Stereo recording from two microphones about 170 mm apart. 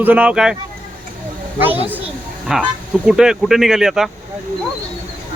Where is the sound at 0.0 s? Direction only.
10° right (ahead or behind).